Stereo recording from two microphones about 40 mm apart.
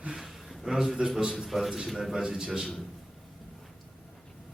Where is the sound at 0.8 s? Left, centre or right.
Centre.